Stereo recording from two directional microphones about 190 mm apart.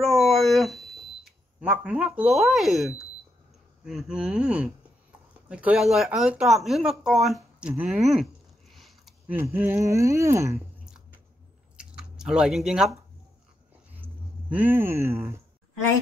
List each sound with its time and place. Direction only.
0.0 s a sound: centre (ahead or behind)
3.8 s speech: 5° right (ahead or behind)
11.7 s chewing: 5° right (ahead or behind)
13.9 s speech: 10° right (ahead or behind)